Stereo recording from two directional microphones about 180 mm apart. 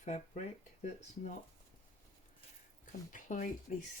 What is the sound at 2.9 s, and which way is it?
Speech, 45° left (ahead or behind).